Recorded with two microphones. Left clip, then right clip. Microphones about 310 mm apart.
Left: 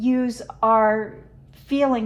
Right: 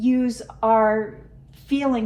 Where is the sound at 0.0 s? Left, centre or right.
Left.